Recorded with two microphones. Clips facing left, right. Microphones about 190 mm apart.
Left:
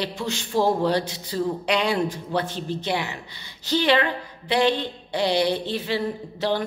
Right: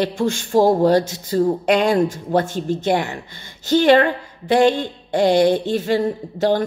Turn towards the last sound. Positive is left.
turn(degrees=-45)  # may be behind; listen again after turning